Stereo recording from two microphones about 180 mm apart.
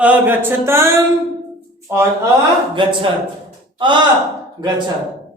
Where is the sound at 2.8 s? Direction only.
25° right (ahead or behind).